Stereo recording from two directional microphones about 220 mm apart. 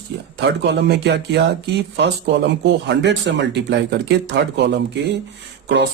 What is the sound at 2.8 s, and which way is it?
Speech, 55° right (ahead or behind).